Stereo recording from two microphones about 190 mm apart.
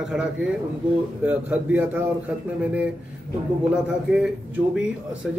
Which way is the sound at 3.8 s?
5° right (ahead or behind).